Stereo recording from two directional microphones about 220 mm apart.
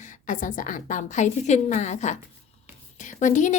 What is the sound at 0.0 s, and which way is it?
A woman's voice, 35° left (ahead or behind).